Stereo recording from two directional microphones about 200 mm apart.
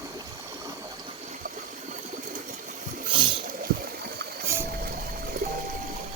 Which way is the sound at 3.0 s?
25° right (ahead or behind).